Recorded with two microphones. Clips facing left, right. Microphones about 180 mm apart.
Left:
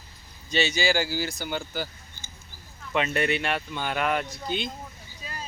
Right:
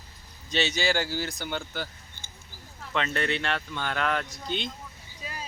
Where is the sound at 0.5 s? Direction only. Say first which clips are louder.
Left 2 dB; centre (ahead or behind).